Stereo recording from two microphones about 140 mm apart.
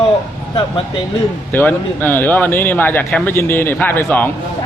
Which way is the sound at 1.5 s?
15° left (ahead or behind).